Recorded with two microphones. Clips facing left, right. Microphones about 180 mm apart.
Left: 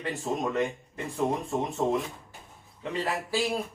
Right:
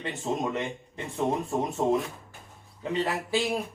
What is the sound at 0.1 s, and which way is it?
A man's voice, centre (ahead or behind).